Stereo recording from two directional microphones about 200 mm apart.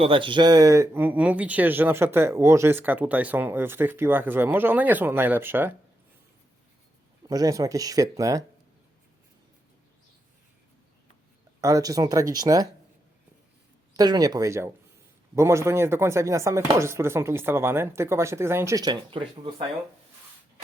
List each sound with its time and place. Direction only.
0.0 s speech: 25° right (ahead or behind); by 5.7 s 10° right (ahead or behind)
7.3 s speech: 15° right (ahead or behind)
11.6 s speech: 15° right (ahead or behind)
13.9 s speech: 20° right (ahead or behind)